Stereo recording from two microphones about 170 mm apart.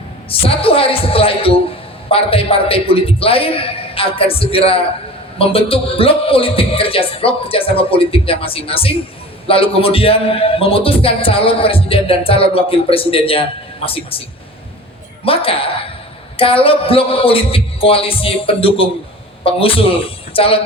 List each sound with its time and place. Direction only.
0.3 s a man's voice: 35° left (ahead or behind)
15.2 s a man's voice: 35° left (ahead or behind)